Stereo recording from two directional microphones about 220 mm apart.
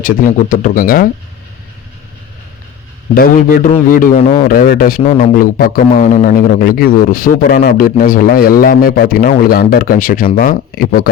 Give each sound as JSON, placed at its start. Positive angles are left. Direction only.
{"t": 0.0, "sound": "a man's voice", "side_deg": 40}
{"t": 3.2, "sound": "a man's voice", "side_deg": 40}